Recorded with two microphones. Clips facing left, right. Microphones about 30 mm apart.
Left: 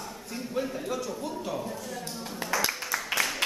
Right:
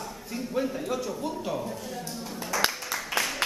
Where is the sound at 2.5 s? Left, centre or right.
Centre.